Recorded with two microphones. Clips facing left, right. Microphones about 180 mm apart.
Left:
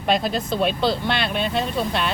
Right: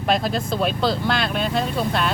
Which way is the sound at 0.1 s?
Centre (ahead or behind).